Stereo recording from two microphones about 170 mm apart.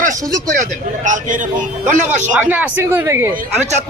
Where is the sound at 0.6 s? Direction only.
45° right (ahead or behind).